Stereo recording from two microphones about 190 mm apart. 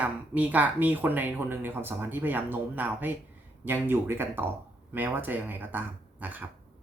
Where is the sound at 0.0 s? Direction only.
10° right (ahead or behind).